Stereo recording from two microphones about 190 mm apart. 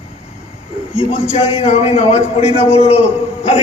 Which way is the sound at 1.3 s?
30° left (ahead or behind).